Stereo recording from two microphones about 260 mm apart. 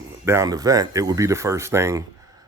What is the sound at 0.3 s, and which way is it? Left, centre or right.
Speech, centre.